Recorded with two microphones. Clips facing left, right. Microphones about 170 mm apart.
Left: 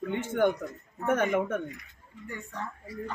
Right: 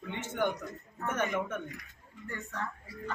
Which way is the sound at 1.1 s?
55° left (ahead or behind).